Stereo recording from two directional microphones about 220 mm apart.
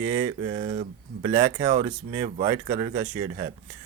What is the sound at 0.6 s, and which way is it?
Speech, 30° right (ahead or behind).